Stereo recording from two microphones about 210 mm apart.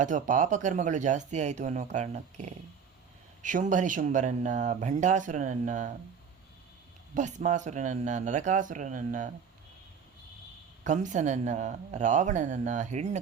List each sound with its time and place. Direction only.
0.0 s speech: 35° right (ahead or behind)
7.1 s speech: 35° right (ahead or behind)
10.8 s speech: 35° right (ahead or behind)